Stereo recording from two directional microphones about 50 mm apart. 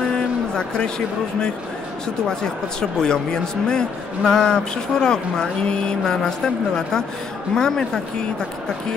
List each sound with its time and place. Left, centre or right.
0.6 s speech: centre